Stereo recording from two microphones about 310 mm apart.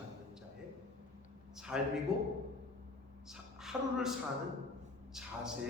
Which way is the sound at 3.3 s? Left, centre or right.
Centre.